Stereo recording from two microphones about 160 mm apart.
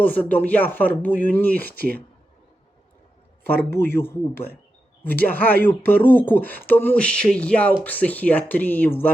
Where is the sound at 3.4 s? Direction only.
15° left (ahead or behind).